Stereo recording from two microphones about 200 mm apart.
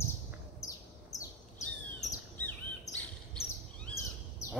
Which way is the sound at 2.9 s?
15° left (ahead or behind).